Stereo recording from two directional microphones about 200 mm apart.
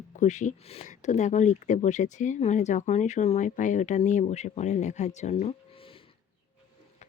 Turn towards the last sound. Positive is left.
turn(degrees=25)  # may be behind; listen again after turning